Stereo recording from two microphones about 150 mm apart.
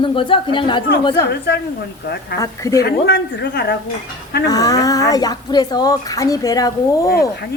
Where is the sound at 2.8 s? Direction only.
90° left.